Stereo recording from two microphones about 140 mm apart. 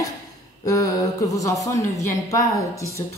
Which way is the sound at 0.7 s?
25° left (ahead or behind).